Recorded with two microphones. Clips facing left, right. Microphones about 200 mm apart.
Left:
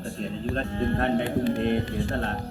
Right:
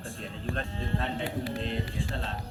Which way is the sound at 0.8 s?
60° left (ahead or behind).